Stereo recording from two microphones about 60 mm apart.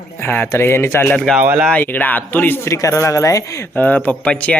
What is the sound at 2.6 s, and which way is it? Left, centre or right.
Speech, left.